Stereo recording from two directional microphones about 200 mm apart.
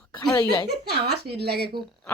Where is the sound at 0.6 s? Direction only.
55° right (ahead or behind).